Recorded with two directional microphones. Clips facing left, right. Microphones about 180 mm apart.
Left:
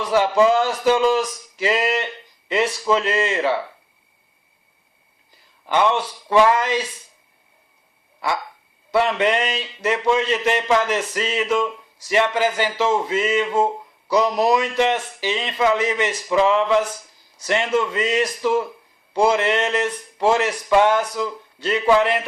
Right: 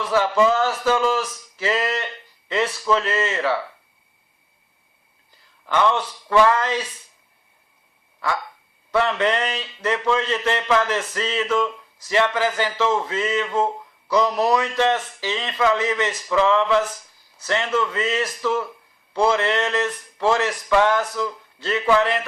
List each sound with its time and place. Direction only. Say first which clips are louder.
0.0 s speech: left 2 dB; 15° left (ahead or behind)
5.7 s speech: left 1 dB; 15° left (ahead or behind)
8.9 s speech: left 2 dB; 15° left (ahead or behind)